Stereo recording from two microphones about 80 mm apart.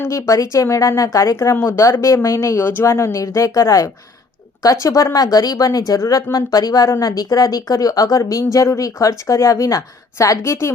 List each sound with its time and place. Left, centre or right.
0.1 s a woman's voice: left